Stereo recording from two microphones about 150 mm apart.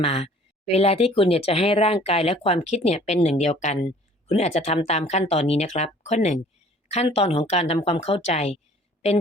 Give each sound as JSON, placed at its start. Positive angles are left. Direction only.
{"t": 0.0, "sound": "speech", "side_deg": 40}